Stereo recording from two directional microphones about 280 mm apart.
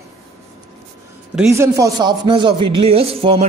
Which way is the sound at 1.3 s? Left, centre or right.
Centre.